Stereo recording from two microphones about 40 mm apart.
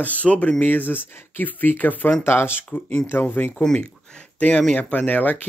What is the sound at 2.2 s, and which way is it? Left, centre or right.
Speech, left.